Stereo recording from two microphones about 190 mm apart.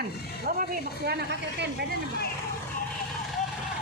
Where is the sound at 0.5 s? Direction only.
50° right (ahead or behind).